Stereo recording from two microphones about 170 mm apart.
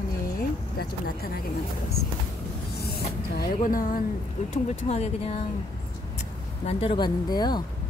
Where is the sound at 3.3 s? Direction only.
55° left (ahead or behind).